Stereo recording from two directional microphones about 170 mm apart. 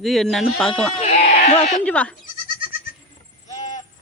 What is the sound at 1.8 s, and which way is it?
Speech, 10° left (ahead or behind).